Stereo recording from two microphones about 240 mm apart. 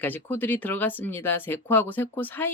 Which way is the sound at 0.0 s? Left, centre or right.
Centre.